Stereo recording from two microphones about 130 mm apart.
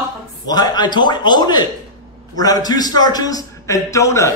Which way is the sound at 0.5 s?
30° left (ahead or behind).